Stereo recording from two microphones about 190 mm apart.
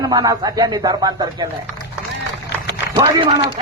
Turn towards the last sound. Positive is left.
turn(degrees=-20)  # may be behind; listen again after turning